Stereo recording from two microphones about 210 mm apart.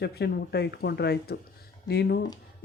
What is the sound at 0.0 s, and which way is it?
Speech, 50° left (ahead or behind).